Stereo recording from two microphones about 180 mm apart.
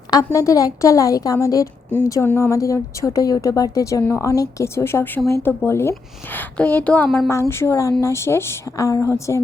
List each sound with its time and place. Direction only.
0.3 s a woman's voice: 20° left (ahead or behind)
7.3 s a woman's voice: 15° left (ahead or behind)